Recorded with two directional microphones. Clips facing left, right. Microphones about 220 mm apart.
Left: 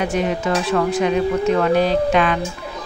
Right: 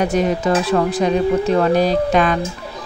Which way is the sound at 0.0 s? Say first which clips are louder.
Right 3 dB; 40° right (ahead or behind).